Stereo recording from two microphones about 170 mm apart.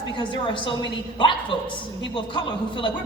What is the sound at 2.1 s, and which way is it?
Speech, 30° left (ahead or behind).